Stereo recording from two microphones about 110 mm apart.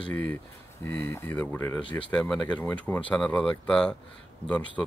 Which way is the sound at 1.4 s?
10° left (ahead or behind).